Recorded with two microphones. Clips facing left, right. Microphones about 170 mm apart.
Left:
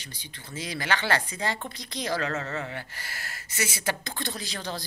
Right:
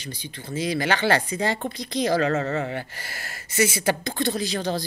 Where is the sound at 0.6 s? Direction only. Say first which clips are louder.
Right 6 dB; 15° right (ahead or behind).